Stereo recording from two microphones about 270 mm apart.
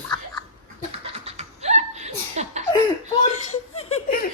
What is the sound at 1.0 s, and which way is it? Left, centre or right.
Laughter, right.